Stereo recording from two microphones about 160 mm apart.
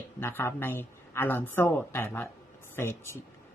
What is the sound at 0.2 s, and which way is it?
Speech, 15° left (ahead or behind).